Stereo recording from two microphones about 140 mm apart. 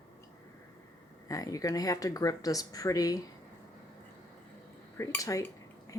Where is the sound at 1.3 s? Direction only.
25° left (ahead or behind).